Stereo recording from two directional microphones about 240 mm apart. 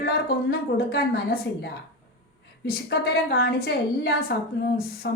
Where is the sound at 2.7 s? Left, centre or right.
Left.